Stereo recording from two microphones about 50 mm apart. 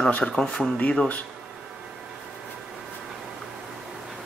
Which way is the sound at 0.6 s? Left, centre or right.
Left.